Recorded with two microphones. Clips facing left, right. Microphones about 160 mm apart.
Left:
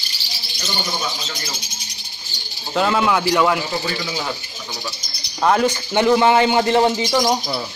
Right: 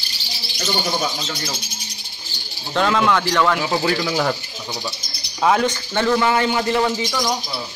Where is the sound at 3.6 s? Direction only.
65° right (ahead or behind).